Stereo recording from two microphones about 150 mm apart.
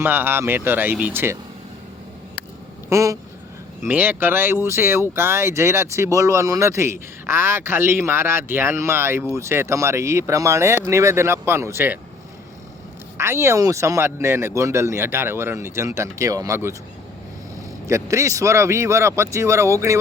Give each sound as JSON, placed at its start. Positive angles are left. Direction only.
{"t": 0.0, "sound": "speech", "side_deg": -15}
{"t": 2.9, "sound": "speech", "side_deg": -20}
{"t": 13.1, "sound": "speech", "side_deg": -15}
{"t": 17.8, "sound": "speech", "side_deg": -20}